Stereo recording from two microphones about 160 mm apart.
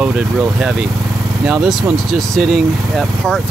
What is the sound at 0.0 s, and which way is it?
Speech, 5° right (ahead or behind).